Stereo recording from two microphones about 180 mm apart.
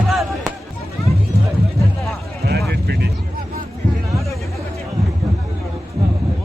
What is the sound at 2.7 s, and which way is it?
Vehicle, 65° right (ahead or behind).